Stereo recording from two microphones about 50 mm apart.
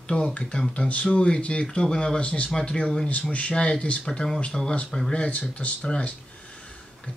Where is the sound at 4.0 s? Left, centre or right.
Centre.